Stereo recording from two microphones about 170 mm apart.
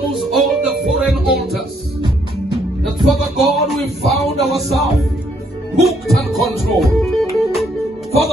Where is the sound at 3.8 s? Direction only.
40° right (ahead or behind).